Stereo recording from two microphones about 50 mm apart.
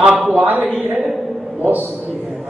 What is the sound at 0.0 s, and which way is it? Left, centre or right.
Speech, right.